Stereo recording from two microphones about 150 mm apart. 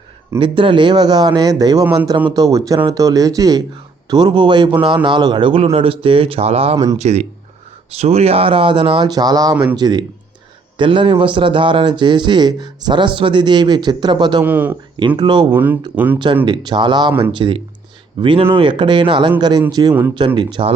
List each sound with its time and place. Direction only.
0.3 s speech: 35° right (ahead or behind)
14.4 s speech: 10° right (ahead or behind)
14.9 s speech: 30° right (ahead or behind)
15.5 s speech: 10° right (ahead or behind)
16.1 s speech: 30° right (ahead or behind)
19.9 s speech: 15° right (ahead or behind)
20.1 s speech: 30° right (ahead or behind)